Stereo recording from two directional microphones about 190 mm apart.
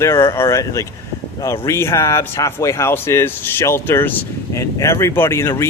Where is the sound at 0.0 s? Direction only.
15° left (ahead or behind).